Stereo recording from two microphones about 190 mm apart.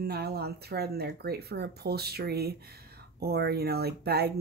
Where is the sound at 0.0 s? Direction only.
55° right (ahead or behind).